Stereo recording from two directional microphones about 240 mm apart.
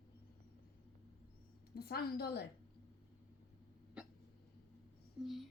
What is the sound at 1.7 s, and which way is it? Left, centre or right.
Speech, left.